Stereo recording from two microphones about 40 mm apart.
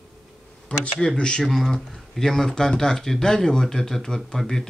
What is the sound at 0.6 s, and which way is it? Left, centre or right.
Speech, left.